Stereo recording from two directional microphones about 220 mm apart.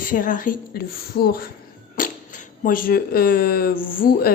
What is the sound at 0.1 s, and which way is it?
A woman's voice, 40° left (ahead or behind).